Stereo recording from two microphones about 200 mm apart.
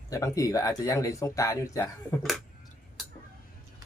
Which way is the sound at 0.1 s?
15° left (ahead or behind).